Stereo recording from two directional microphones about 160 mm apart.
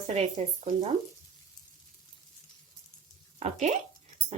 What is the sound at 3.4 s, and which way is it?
Speech, 45° right (ahead or behind).